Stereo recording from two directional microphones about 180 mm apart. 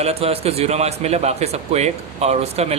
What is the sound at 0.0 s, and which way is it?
A man's voice, 35° right (ahead or behind).